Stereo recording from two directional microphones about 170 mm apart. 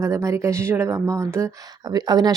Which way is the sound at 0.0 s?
15° right (ahead or behind).